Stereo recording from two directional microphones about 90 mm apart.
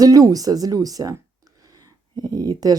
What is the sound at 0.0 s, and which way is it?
Speech, 45° right (ahead or behind).